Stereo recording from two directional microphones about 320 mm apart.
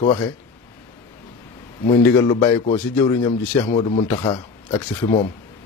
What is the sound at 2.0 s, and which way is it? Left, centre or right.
Speech, centre.